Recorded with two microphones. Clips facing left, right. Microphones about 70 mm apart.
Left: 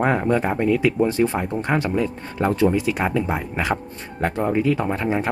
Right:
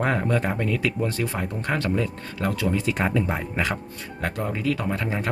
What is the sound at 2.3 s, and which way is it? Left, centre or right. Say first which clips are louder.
Speech: left 8 dB; left.